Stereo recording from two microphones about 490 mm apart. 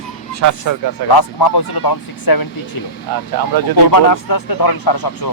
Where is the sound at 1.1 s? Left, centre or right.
Left.